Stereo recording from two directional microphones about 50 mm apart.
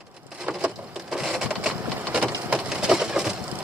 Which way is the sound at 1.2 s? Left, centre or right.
Centre.